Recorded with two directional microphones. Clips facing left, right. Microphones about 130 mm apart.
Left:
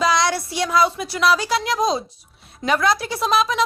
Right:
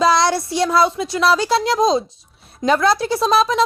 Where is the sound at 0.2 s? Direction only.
30° right (ahead or behind).